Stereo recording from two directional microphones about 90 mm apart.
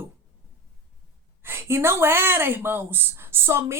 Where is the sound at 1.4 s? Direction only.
25° right (ahead or behind).